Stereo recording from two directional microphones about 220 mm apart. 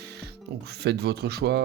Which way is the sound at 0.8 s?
50° right (ahead or behind).